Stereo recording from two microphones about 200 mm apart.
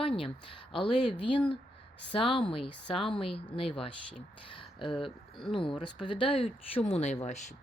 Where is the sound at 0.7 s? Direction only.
25° left (ahead or behind).